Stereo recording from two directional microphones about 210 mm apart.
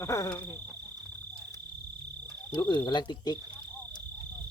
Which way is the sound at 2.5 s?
20° left (ahead or behind).